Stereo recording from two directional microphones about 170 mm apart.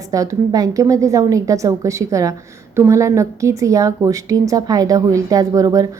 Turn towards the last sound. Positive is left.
turn(degrees=-20)  # may be behind; listen again after turning